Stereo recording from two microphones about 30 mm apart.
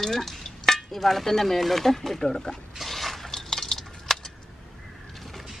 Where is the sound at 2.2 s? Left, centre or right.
Left.